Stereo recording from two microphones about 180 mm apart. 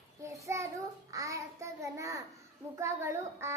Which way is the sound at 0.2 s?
15° right (ahead or behind).